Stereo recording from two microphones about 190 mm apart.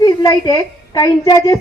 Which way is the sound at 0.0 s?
20° left (ahead or behind).